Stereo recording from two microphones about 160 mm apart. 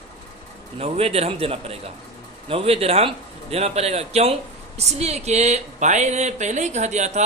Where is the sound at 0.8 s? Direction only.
40° right (ahead or behind).